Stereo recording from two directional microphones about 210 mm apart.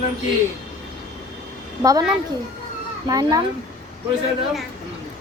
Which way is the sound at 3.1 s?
20° right (ahead or behind).